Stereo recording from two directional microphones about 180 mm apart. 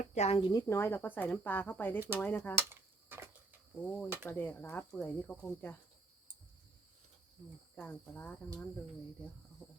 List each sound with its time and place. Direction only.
0.0 s speech: 40° left (ahead or behind)
0.5 s speech: 15° left (ahead or behind)
2.6 s a sound: 15° right (ahead or behind)
3.8 s speech: 10° left (ahead or behind)
7.8 s speech: 10° left (ahead or behind)
9.6 s a sound: 10° left (ahead or behind)